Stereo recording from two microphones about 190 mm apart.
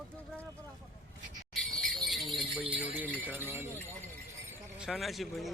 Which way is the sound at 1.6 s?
Centre (ahead or behind).